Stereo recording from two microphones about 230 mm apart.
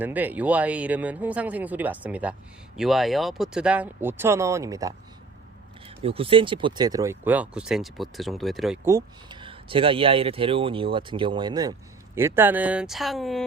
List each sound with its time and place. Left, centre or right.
0.0 s speech: centre
6.0 s speech: right; by 8.9 s centre
8.9 s speech: centre